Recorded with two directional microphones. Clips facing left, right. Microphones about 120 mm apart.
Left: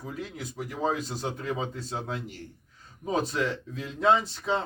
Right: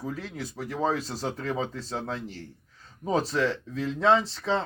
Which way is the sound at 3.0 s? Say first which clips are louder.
Right 2 dB; 35° right (ahead or behind).